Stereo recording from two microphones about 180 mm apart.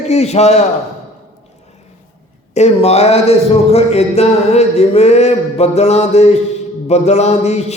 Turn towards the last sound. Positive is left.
turn(degrees=40)  # may be behind; listen again after turning